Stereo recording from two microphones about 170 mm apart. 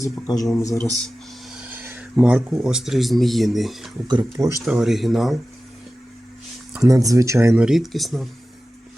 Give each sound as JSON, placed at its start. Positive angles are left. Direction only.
{"t": 0.0, "sound": "speech", "side_deg": 20}
{"t": 1.5, "sound": "speech", "side_deg": -5}
{"t": 4.1, "sound": "speech", "side_deg": -20}
{"t": 4.6, "sound": "speech", "side_deg": 0}
{"t": 6.8, "sound": "speech", "side_deg": -20}
{"t": 7.6, "sound": "speech", "side_deg": 0}